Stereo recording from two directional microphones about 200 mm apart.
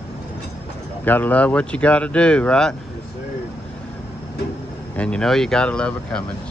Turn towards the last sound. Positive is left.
turn(degrees=5)  # may be behind; listen again after turning